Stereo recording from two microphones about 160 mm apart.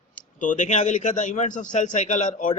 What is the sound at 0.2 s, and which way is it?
Speech, 55° left (ahead or behind).